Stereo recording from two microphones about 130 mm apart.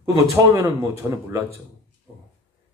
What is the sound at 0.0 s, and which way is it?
Speech, 25° right (ahead or behind).